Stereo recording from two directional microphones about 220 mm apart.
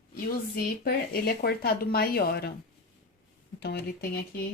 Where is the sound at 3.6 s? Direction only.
50° left (ahead or behind).